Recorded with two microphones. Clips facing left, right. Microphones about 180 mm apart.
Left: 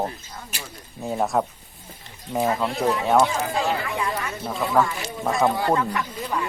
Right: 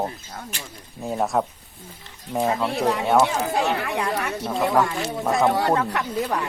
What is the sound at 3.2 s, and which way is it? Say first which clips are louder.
Speech: right 1 dB; 75° right (ahead or behind).